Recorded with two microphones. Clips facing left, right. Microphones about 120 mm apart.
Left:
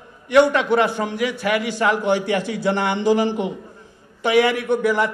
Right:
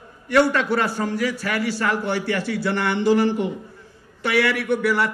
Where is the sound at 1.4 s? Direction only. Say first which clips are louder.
Left 3 dB; 20° left (ahead or behind).